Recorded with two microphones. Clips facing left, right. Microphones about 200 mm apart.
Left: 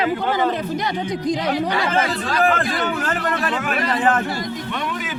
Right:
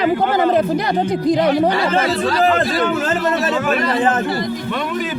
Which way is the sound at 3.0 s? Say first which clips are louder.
Right 5 dB; 25° right (ahead or behind).